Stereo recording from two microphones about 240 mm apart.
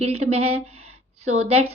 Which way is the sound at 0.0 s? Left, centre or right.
Right.